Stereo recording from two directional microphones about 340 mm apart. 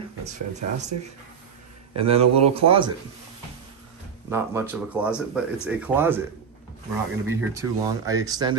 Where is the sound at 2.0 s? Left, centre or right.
Centre.